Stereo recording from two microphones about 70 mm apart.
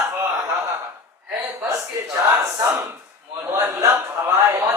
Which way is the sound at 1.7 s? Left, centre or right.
Right.